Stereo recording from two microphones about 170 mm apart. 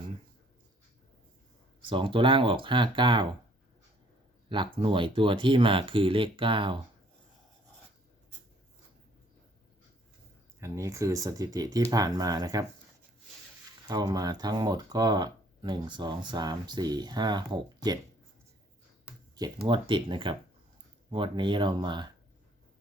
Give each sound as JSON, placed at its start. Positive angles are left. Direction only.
{"t": 1.9, "sound": "speech", "side_deg": -30}
{"t": 4.4, "sound": "speech", "side_deg": -30}
{"t": 10.6, "sound": "speech", "side_deg": -15}
{"t": 13.8, "sound": "speech", "side_deg": -20}
{"t": 19.4, "sound": "speech", "side_deg": -30}